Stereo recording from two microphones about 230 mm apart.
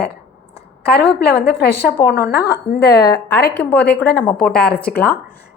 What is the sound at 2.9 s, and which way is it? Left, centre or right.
Speech, centre.